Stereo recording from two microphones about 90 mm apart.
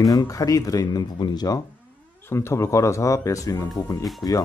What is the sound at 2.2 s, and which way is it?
Speech, 30° left (ahead or behind).